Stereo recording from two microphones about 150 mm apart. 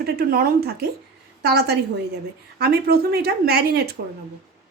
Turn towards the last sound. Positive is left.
turn(degrees=-90)